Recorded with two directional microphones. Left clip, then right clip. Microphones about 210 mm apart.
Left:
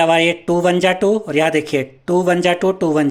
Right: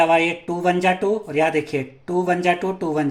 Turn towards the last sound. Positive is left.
turn(degrees=35)  # may be behind; listen again after turning